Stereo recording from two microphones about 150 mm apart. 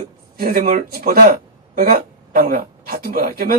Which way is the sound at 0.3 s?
70° right (ahead or behind).